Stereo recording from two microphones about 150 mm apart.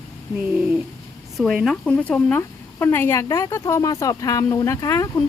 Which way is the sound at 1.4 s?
Centre (ahead or behind).